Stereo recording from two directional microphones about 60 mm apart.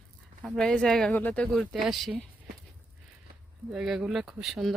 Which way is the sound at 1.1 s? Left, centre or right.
Left.